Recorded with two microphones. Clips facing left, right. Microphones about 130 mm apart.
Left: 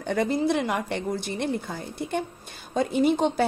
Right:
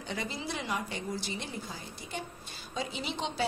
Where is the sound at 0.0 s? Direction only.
55° left (ahead or behind).